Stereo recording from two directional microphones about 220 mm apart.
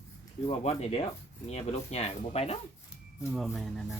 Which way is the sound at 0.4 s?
30° left (ahead or behind).